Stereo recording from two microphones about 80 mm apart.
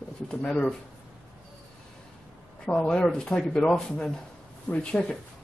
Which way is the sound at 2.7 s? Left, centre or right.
Centre.